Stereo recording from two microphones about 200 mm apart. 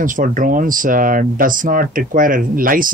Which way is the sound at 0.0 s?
40° right (ahead or behind).